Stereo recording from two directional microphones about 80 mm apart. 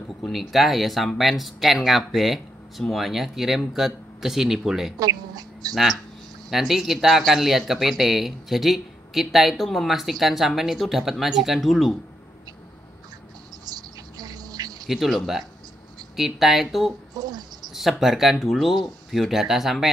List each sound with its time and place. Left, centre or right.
0.2 s speech: centre
4.9 s speech: right
6.5 s speech: centre
13.7 s a sound: right
14.9 s speech: centre
17.1 s a sound: right
17.7 s speech: centre